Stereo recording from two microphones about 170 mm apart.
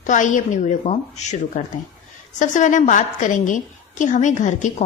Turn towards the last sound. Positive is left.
turn(degrees=45)  # may be behind; listen again after turning